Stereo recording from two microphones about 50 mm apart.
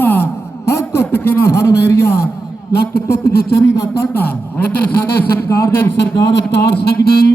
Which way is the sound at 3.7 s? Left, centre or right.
Left.